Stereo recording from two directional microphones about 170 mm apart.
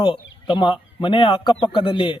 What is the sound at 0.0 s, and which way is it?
Speech, 30° left (ahead or behind).